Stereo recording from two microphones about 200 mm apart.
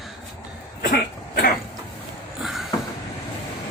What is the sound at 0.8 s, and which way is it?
Cough, 50° left (ahead or behind).